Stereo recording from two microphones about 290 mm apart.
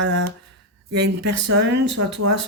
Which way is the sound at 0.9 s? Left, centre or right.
Right.